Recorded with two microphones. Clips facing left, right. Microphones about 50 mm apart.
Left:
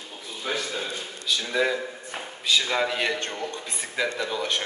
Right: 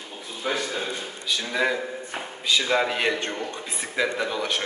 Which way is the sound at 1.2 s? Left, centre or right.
Centre.